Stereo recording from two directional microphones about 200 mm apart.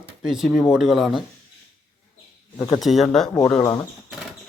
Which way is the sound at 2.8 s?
Centre (ahead or behind).